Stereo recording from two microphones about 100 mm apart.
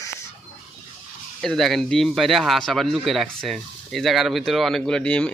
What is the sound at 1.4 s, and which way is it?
Speech, 5° left (ahead or behind).